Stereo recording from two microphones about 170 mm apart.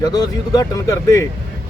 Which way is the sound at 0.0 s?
20° left (ahead or behind).